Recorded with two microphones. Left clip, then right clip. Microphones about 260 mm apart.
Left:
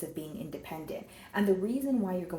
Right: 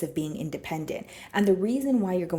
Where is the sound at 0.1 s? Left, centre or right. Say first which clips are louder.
Right 8 dB; right.